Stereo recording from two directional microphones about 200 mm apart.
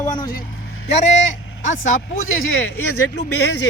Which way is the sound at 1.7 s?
75° left (ahead or behind).